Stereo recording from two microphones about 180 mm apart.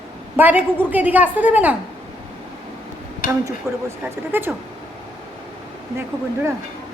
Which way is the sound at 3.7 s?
15° right (ahead or behind).